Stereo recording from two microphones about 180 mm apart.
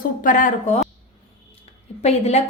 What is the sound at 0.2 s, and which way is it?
Speech, 50° left (ahead or behind).